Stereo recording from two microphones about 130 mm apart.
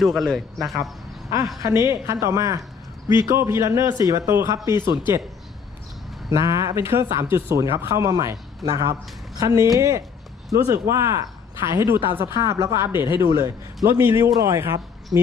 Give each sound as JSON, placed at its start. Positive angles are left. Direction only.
{"t": 0.0, "sound": "speech", "side_deg": 0}
{"t": 1.6, "sound": "speech", "side_deg": -20}
{"t": 6.3, "sound": "speech", "side_deg": -20}